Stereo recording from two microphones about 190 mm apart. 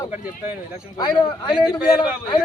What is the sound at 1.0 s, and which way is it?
Speech, 25° left (ahead or behind).